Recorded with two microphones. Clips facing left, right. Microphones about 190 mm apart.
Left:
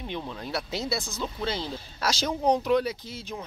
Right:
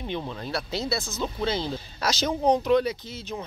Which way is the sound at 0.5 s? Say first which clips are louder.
Right 1 dB; 15° left (ahead or behind).